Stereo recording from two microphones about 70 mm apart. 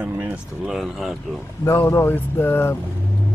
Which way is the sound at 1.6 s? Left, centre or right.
Left.